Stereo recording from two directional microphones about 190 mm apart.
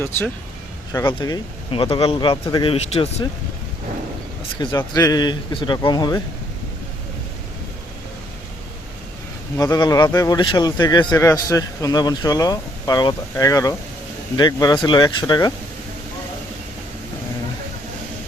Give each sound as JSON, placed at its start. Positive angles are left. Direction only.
{"t": 0.9, "sound": "a man's voice", "side_deg": 20}
{"t": 4.6, "sound": "a man's voice", "side_deg": 20}
{"t": 9.6, "sound": "a man's voice", "side_deg": 20}